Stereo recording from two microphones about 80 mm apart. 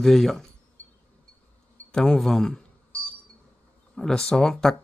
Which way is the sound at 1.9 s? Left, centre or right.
Centre.